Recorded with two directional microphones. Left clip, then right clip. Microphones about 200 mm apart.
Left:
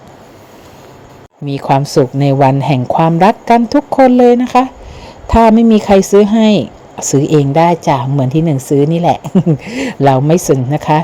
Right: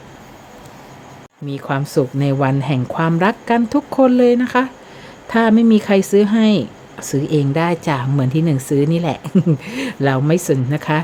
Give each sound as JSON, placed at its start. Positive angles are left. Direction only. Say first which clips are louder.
{"t": 1.5, "sound": "speech", "louder": "left 10 dB", "side_deg": 25}